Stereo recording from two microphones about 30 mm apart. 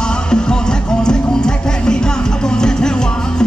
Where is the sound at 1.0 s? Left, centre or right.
Left.